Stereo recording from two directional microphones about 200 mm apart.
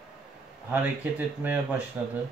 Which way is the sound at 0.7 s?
10° right (ahead or behind).